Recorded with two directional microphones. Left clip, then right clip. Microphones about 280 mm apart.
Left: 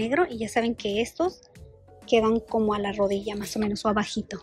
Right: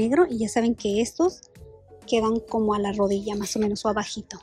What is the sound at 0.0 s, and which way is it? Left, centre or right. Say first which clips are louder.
A woman's voice: right 3 dB; centre.